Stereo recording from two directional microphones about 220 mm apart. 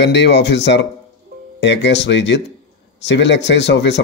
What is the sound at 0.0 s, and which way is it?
Speech, 50° left (ahead or behind).